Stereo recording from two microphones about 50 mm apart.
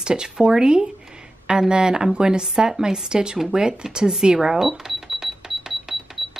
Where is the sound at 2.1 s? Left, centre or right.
Centre.